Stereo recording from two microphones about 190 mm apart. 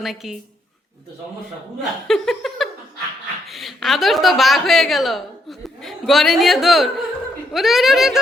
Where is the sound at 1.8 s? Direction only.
Centre (ahead or behind).